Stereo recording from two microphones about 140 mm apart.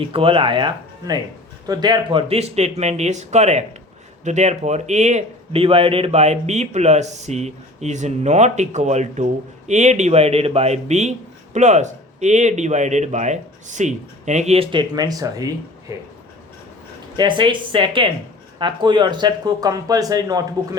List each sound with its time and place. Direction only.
0.0 s a man's voice: 40° right (ahead or behind); by 16.0 s 25° right (ahead or behind)
17.2 s speech: 35° right (ahead or behind)